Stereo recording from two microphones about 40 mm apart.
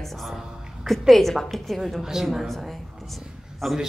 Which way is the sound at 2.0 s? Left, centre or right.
Centre.